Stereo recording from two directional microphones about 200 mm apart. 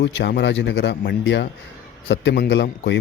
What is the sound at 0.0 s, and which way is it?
Speech, 55° left (ahead or behind).